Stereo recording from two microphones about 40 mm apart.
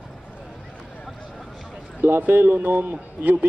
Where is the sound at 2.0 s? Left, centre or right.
Right.